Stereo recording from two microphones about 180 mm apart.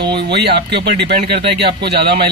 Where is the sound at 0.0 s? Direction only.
65° right (ahead or behind).